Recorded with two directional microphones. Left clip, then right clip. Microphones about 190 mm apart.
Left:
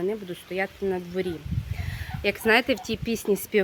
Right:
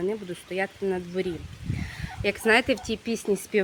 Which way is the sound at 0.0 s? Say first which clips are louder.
Even; 5° left (ahead or behind).